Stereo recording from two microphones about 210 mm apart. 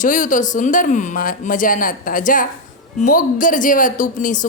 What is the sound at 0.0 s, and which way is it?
A woman's voice, 40° left (ahead or behind).